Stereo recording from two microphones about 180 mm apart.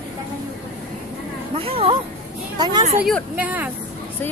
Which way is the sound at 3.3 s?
10° right (ahead or behind).